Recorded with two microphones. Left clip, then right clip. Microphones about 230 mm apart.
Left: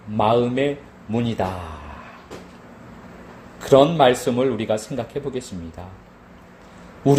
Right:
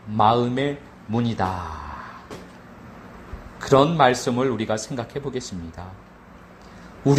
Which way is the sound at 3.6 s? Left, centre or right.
Right.